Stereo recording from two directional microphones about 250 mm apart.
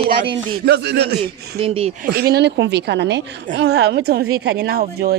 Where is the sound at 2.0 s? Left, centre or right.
Right.